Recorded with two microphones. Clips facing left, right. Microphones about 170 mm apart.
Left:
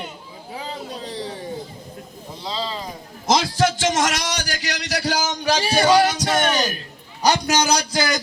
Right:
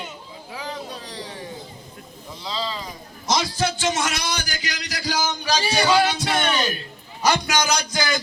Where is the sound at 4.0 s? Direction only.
90° left.